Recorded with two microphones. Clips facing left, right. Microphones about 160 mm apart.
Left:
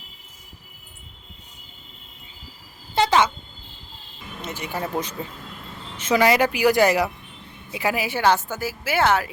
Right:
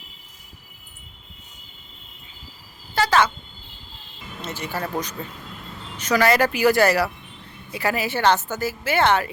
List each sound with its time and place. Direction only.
2.9 s a sound: 20° left (ahead or behind)
4.4 s a woman's voice: 15° left (ahead or behind)
6.0 s a woman's voice: 20° left (ahead or behind); by 9.3 s 5° left (ahead or behind)